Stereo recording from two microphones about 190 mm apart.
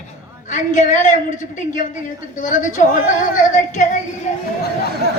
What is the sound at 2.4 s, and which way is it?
A man's voice, 40° left (ahead or behind).